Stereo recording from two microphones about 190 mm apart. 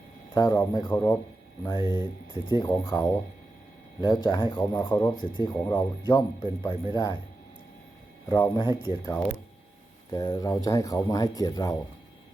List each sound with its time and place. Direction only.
0.3 s speech: 15° left (ahead or behind)
8.3 s speech: 20° left (ahead or behind)
10.1 s speech: 20° left (ahead or behind)